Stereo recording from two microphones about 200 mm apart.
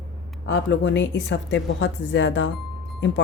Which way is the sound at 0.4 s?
65° left (ahead or behind).